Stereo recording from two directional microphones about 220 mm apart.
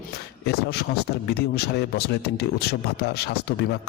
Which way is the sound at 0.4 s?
45° left (ahead or behind).